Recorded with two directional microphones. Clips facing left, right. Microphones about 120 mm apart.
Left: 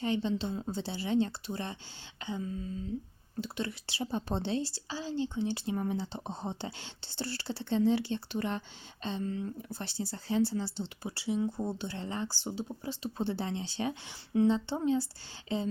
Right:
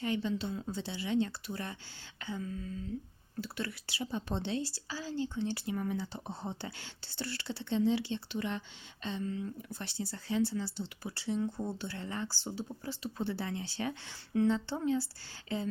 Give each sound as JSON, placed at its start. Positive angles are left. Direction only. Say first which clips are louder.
{"t": 0.0, "sound": "speech", "louder": "left 2 dB", "side_deg": 30}
{"t": 5.6, "sound": "speech", "louder": "left 2 dB", "side_deg": 30}
{"t": 11.1, "sound": "speech", "louder": "left 2 dB", "side_deg": 10}